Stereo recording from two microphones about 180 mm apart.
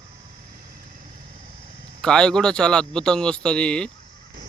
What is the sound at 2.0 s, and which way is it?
Speech, 5° left (ahead or behind).